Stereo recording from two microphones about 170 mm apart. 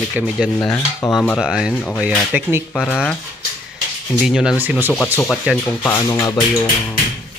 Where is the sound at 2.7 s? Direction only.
5° left (ahead or behind).